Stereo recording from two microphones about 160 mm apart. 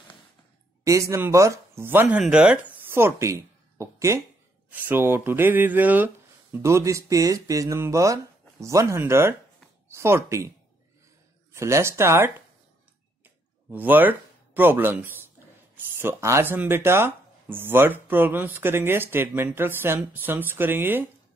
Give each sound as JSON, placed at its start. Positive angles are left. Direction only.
{"t": 0.8, "sound": "speech", "side_deg": -20}
{"t": 11.5, "sound": "speech", "side_deg": -15}